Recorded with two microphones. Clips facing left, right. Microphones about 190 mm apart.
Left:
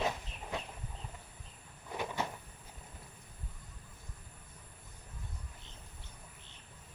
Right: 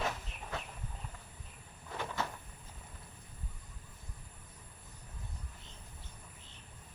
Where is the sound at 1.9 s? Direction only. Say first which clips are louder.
Left 1 dB; 15° left (ahead or behind).